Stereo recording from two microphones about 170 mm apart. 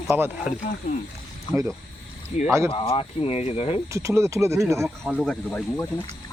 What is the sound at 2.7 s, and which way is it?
Speech, 30° left (ahead or behind).